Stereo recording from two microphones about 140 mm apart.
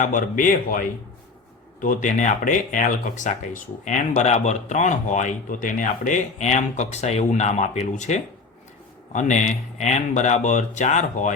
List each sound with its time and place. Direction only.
0.0 s a man's voice: 75° left (ahead or behind)